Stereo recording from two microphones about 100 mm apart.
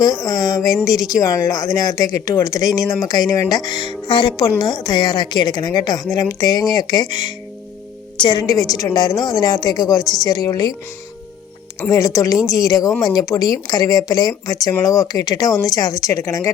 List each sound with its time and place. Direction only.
0.0 s a woman's voice: 35° left (ahead or behind)
11.8 s speech: 35° left (ahead or behind)